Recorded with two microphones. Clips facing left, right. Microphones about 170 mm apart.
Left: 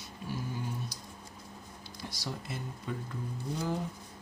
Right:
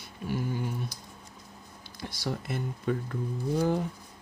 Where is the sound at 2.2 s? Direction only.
55° right (ahead or behind).